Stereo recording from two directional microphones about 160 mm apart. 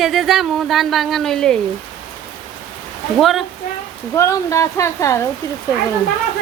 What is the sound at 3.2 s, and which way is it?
Speech, centre (ahead or behind).